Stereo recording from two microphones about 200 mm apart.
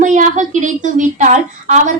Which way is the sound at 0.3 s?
40° right (ahead or behind).